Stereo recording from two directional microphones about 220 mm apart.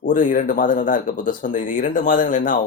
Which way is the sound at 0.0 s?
35° left (ahead or behind).